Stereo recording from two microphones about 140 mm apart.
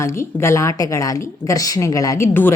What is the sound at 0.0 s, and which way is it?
A woman's voice, 20° left (ahead or behind).